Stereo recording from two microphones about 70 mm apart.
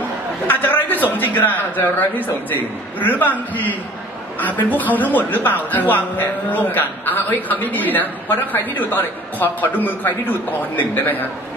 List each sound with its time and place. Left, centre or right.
0.5 s a man's voice: left